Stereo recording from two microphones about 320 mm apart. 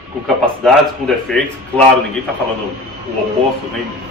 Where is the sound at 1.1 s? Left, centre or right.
Centre.